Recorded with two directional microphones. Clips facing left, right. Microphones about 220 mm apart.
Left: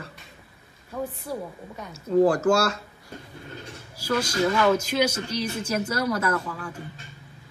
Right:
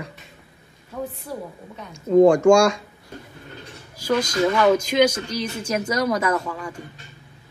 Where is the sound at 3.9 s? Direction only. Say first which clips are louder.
Right 4 dB; 10° left (ahead or behind).